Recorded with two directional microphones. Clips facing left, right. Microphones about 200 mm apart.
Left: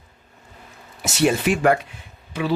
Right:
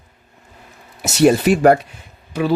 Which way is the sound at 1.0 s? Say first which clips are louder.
Right 6 dB; 40° right (ahead or behind).